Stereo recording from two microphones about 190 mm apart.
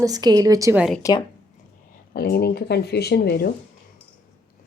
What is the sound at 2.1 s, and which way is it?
Speech, 55° left (ahead or behind).